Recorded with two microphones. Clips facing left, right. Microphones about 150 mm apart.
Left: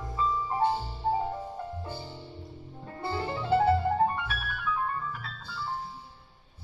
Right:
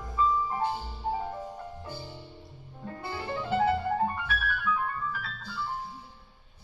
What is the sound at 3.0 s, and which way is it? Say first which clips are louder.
Music: left 3 dB; 30° left (ahead or behind).